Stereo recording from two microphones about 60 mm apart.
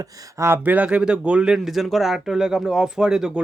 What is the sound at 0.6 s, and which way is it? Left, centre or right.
A man's voice, right.